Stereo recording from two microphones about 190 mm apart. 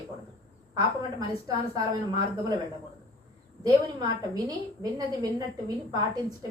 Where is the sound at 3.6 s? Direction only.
20° right (ahead or behind).